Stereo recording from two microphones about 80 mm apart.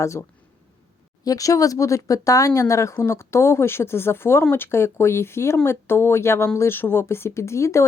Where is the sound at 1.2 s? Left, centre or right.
Left.